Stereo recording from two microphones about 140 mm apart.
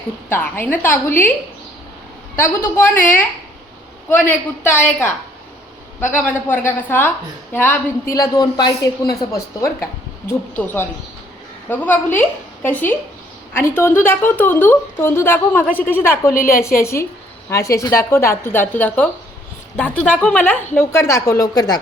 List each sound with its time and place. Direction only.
0.3 s a woman's voice: 15° left (ahead or behind)
2.3 s a woman's voice: 15° left (ahead or behind)
4.6 s a woman's voice: 10° left (ahead or behind)
8.1 s a woman's voice: 25° left (ahead or behind)
16.3 s a woman's voice: 90° left
16.8 s a woman's voice: 20° left (ahead or behind)